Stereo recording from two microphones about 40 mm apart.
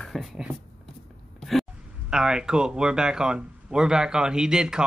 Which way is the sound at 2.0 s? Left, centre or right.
Centre.